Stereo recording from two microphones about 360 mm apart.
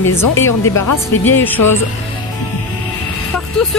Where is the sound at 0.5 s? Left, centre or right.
Left.